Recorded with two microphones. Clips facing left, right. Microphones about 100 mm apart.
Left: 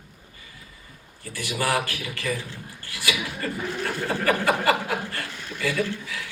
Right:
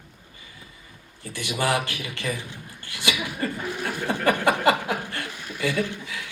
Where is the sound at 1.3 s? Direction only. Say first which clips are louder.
Right 1 dB; 25° right (ahead or behind).